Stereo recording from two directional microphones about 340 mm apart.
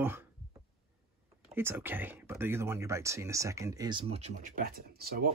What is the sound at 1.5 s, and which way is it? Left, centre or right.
Speech, centre.